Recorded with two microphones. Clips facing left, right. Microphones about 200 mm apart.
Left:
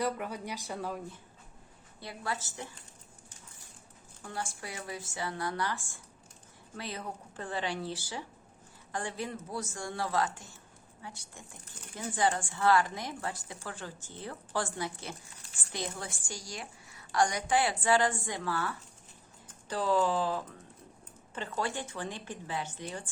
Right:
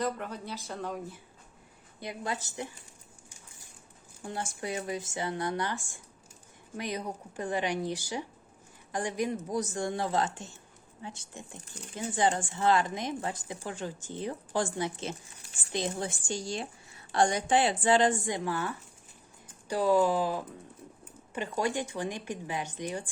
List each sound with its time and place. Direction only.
0.0 s speech: 10° left (ahead or behind)
2.0 s speech: 20° right (ahead or behind)
4.2 s a woman's voice: 20° right (ahead or behind)